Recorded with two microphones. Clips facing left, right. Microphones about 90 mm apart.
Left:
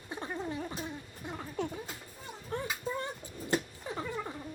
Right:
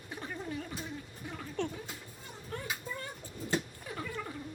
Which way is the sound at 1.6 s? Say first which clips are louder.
Even; 5° left (ahead or behind).